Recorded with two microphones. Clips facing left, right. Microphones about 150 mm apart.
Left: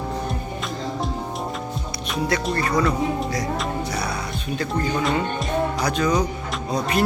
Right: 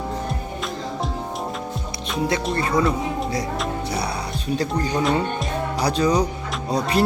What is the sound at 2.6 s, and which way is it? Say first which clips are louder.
Speech: right 2 dB; 25° right (ahead or behind).